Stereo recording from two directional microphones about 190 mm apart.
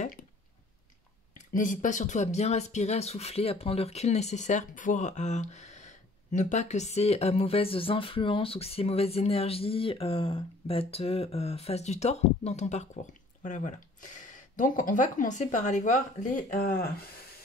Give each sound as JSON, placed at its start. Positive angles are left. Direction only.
{"t": 1.5, "sound": "speech", "side_deg": 45}